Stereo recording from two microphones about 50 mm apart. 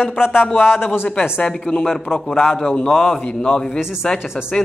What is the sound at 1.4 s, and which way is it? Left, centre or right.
A man's voice, centre.